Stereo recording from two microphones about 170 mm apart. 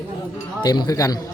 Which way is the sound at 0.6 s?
25° left (ahead or behind).